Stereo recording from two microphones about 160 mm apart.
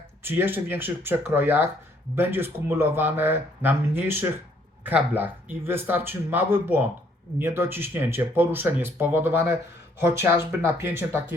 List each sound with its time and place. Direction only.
0.2 s speech: 15° right (ahead or behind)